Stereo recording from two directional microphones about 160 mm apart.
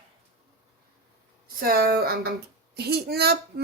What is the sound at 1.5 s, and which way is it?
Speech, 70° right (ahead or behind).